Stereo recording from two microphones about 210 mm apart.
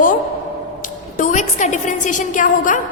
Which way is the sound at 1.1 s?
35° left (ahead or behind).